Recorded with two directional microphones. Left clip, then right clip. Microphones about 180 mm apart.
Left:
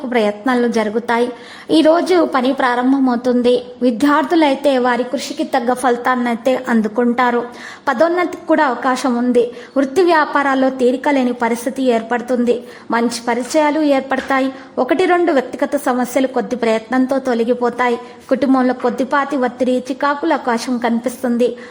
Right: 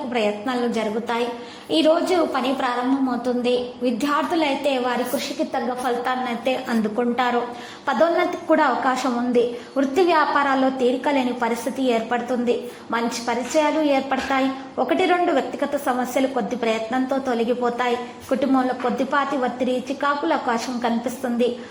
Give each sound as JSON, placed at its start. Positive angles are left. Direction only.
{"t": 0.1, "sound": "a woman's voice", "side_deg": 45}